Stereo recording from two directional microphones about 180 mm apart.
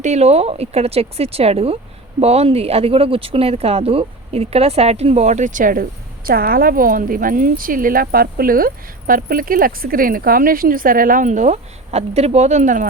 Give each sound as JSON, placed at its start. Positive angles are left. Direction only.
{"t": 0.0, "sound": "speech", "side_deg": -40}